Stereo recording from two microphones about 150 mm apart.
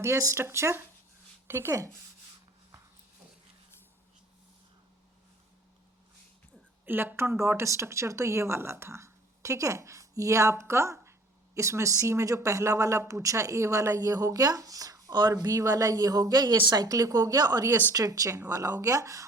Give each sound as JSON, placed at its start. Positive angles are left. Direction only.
{"t": 0.0, "sound": "speech", "side_deg": -20}
{"t": 6.8, "sound": "speech", "side_deg": -15}